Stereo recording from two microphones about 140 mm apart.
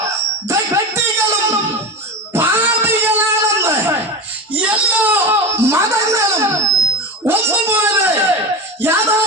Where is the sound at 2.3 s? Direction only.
15° right (ahead or behind).